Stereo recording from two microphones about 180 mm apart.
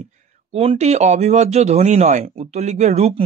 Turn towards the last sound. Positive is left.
turn(degrees=-35)  # may be behind; listen again after turning